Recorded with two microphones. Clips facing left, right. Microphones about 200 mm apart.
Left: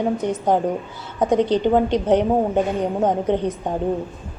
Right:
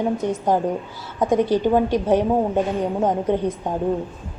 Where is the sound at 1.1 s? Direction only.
20° left (ahead or behind).